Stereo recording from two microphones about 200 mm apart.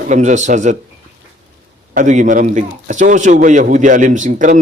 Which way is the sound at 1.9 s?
40° right (ahead or behind).